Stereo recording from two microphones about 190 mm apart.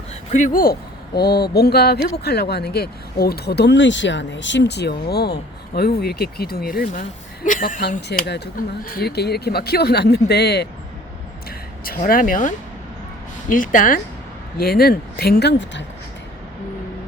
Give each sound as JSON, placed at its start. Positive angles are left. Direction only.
{"t": 0.3, "sound": "speech", "side_deg": 40}
{"t": 8.0, "sound": "speech", "side_deg": 60}
{"t": 11.9, "sound": "speech", "side_deg": 50}